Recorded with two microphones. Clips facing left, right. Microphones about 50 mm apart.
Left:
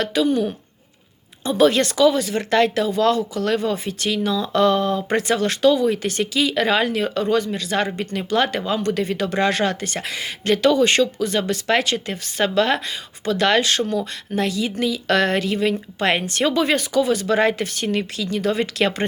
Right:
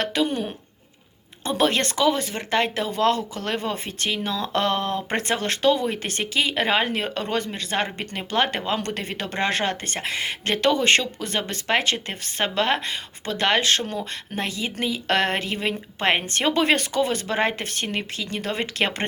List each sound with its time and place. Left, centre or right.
0.0 s speech: right
2.9 s speech: right
17.2 s speech: right